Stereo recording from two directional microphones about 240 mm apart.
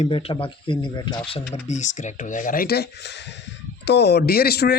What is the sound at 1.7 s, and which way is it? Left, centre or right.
Speech, left.